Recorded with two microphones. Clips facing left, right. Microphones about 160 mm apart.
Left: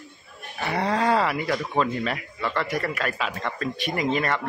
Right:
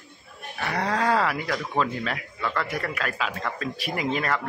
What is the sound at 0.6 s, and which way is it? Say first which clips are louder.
Speech: left 2 dB; 5° left (ahead or behind).